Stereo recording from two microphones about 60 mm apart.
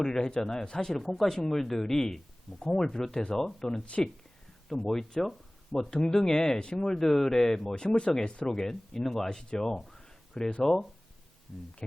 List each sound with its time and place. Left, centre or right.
0.0 s speech: centre
3.8 s speech: left
4.7 s speech: centre
8.4 s speech: centre